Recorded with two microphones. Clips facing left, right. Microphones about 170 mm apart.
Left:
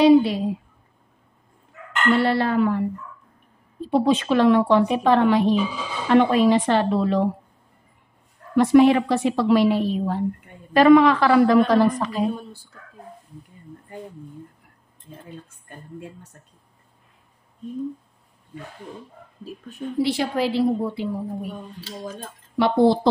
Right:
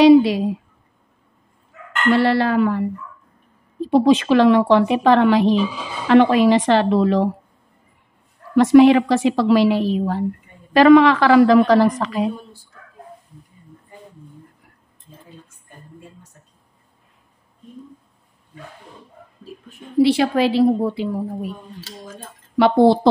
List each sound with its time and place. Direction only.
0.0 s speech: 90° right
2.1 s a woman's voice: 90° right
3.8 s a woman's voice: 85° right
8.5 s a woman's voice: 90° right
20.0 s a woman's voice: 75° right (ahead or behind)